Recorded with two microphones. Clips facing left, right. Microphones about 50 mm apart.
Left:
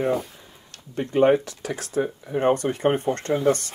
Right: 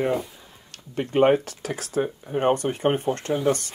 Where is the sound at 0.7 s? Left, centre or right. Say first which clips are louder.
Even; right; by 3.5 s centre.